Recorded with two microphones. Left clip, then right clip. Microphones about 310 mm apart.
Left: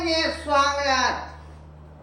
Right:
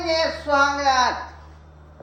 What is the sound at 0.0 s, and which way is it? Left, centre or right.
Speech, centre.